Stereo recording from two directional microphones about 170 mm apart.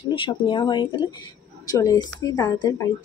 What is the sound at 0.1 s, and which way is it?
Speech, 30° left (ahead or behind).